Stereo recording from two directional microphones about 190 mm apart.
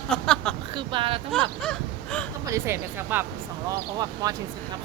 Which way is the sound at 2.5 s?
10° right (ahead or behind).